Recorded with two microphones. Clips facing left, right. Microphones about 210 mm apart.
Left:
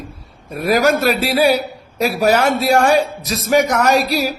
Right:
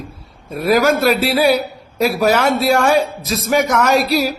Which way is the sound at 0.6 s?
45° left (ahead or behind).